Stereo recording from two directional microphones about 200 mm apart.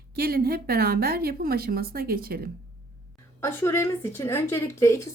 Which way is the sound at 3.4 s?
10° left (ahead or behind).